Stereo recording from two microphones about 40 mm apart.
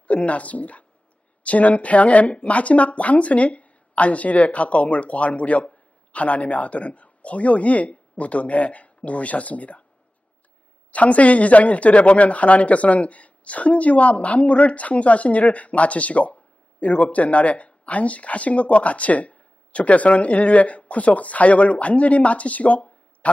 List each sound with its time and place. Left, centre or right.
0.1 s speech: left
10.9 s speech: left